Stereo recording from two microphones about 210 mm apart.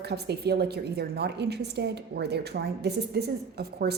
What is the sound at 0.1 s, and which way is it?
A woman's voice, 50° right (ahead or behind).